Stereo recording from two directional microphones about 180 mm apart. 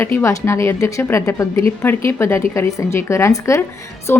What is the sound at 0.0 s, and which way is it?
Speech, 15° left (ahead or behind).